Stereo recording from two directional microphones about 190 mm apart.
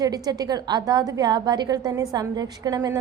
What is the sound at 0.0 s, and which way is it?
A woman's voice, 20° right (ahead or behind).